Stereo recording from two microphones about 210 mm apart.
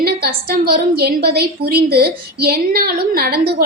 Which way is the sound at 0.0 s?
45° right (ahead or behind).